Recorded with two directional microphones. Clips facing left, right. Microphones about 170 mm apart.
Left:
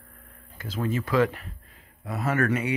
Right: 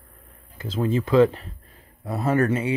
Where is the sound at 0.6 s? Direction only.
25° right (ahead or behind).